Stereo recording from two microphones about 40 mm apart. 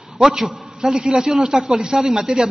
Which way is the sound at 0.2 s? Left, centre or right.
Centre.